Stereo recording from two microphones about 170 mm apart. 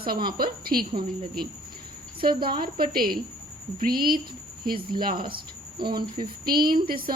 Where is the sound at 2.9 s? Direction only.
60° right (ahead or behind).